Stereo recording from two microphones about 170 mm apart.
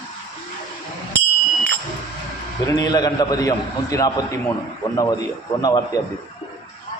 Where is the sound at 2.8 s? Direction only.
25° left (ahead or behind).